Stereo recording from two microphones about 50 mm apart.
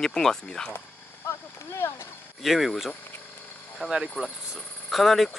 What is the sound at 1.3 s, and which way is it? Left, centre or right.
Clip-clop, left.